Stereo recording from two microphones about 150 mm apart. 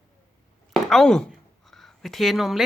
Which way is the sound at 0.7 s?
Centre (ahead or behind).